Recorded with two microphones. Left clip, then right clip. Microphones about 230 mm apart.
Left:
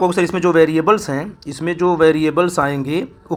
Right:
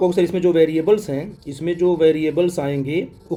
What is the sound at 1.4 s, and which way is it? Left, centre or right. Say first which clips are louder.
Speech: left 3 dB; left.